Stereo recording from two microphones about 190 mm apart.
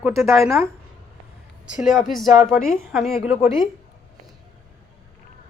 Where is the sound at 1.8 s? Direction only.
Centre (ahead or behind).